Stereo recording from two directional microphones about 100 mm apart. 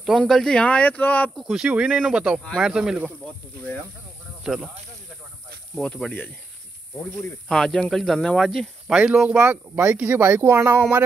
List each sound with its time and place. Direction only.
0.2 s speech: 5° left (ahead or behind)
1.3 s speech: 5° right (ahead or behind)
4.4 s speech: 5° right (ahead or behind)
5.8 s speech: 10° left (ahead or behind)
7.4 s speech: 5° left (ahead or behind); by 11.1 s 25° right (ahead or behind)